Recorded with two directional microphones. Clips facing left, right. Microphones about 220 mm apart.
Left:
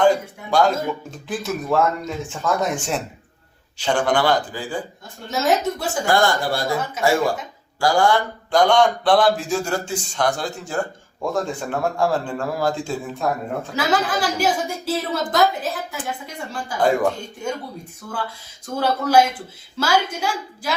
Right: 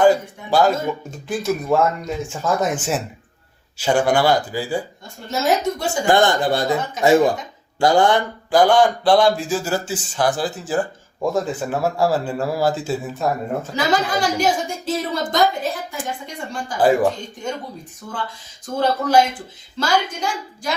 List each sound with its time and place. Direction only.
0.0 s a man's voice: 5° right (ahead or behind)
6.1 s a man's voice: 20° right (ahead or behind)
8.4 s speech: 5° right (ahead or behind)
16.7 s speech: 5° right (ahead or behind)
18.0 s a man's voice: 15° right (ahead or behind)
18.8 s a woman's voice: 10° left (ahead or behind)